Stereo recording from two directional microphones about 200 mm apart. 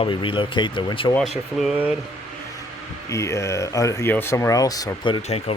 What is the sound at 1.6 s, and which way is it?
Speech, 5° right (ahead or behind).